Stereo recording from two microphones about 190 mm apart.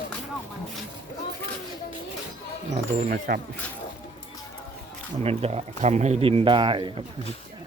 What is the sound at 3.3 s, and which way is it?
Speech, 50° right (ahead or behind).